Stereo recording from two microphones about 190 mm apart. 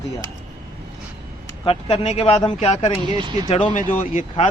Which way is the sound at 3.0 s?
25° right (ahead or behind).